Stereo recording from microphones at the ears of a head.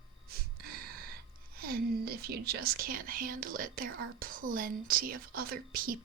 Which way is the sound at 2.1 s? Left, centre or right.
Right.